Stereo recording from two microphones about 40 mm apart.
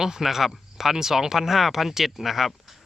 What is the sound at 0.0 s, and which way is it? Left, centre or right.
Speech, centre.